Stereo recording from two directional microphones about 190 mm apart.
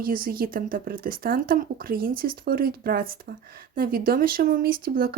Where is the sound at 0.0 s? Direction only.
50° right (ahead or behind).